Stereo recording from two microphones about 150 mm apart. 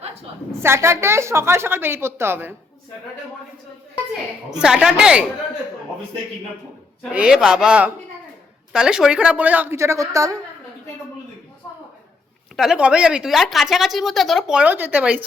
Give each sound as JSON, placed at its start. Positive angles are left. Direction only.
{"t": 0.5, "sound": "a woman's voice", "side_deg": -15}
{"t": 4.6, "sound": "a woman's voice", "side_deg": -5}
{"t": 7.1, "sound": "a woman's voice", "side_deg": -5}
{"t": 12.5, "sound": "a woman's voice", "side_deg": -5}